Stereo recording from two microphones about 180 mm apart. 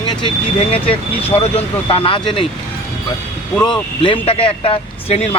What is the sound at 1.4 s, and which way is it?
Speech, 35° left (ahead or behind).